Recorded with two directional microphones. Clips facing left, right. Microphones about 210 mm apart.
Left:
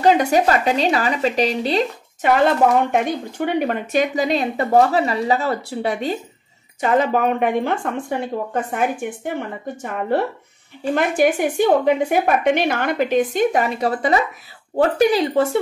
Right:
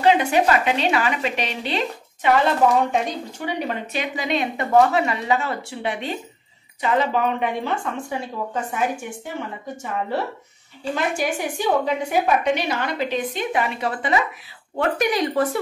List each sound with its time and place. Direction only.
0.0 s a woman's voice: 40° left (ahead or behind)
2.9 s a woman's voice: 55° left (ahead or behind); by 14.2 s 40° left (ahead or behind)
14.8 s speech: 30° left (ahead or behind)